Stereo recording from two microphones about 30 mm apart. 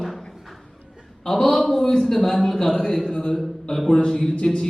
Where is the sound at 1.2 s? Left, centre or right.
Centre.